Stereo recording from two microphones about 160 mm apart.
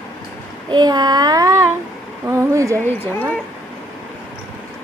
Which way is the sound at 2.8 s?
10° left (ahead or behind).